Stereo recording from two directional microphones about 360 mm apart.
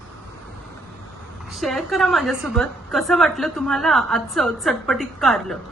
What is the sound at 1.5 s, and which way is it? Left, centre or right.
A woman's voice, centre.